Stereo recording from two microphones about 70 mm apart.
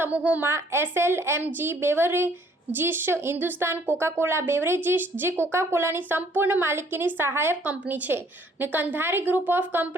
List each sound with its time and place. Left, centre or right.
0.1 s a woman's voice: right
0.4 s a woman's voice: right
7.6 s a woman's voice: right